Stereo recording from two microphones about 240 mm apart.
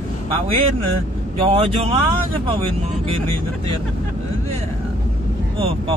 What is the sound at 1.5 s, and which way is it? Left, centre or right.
Speech, right.